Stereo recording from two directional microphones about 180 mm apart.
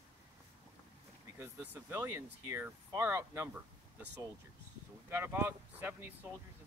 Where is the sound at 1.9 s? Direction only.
15° right (ahead or behind).